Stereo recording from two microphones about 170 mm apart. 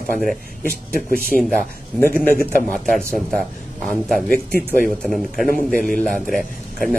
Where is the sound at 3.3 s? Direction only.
Centre (ahead or behind).